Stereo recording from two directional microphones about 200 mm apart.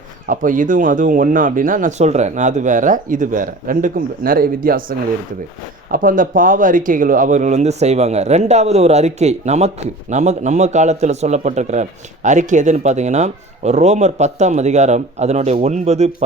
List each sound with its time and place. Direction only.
0.3 s speech: 40° right (ahead or behind)